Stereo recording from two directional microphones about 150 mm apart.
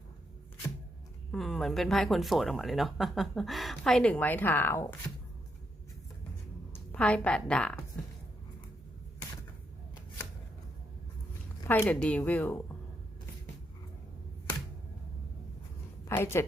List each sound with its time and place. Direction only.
1.3 s speech: 5° left (ahead or behind)
6.7 s a woman's voice: 10° left (ahead or behind)
11.6 s speech: 20° left (ahead or behind)
11.9 s speech: 10° left (ahead or behind)
16.0 s a woman's voice: 15° left (ahead or behind)